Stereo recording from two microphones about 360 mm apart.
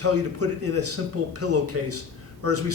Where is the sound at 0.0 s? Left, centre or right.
Right.